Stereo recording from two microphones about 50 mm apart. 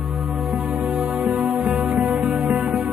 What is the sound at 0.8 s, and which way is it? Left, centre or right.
Music, right.